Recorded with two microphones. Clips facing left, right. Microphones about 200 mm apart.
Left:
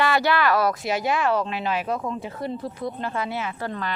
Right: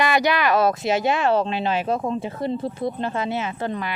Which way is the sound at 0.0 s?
15° right (ahead or behind).